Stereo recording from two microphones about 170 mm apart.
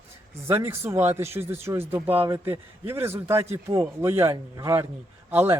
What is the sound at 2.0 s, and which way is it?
Speech, 35° right (ahead or behind).